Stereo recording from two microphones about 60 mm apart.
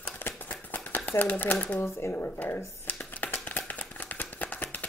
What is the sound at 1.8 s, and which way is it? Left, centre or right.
Speech, left.